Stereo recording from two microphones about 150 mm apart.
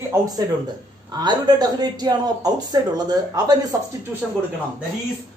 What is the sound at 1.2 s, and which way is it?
Speech, 30° right (ahead or behind).